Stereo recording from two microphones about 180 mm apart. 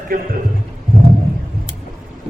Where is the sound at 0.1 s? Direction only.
55° right (ahead or behind).